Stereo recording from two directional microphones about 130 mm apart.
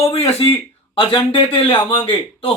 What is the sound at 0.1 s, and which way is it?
Speech, 50° left (ahead or behind).